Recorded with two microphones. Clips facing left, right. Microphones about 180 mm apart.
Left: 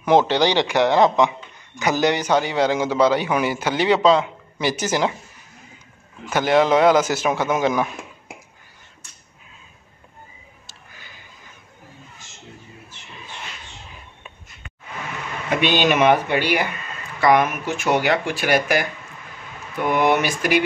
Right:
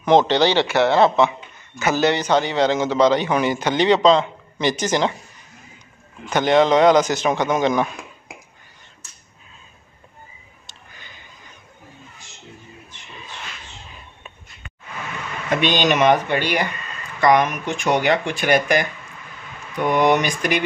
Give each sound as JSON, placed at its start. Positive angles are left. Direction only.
{"t": 0.0, "sound": "a man's voice", "side_deg": 10}
{"t": 6.2, "sound": "a man's voice", "side_deg": 5}
{"t": 15.5, "sound": "a man's voice", "side_deg": 10}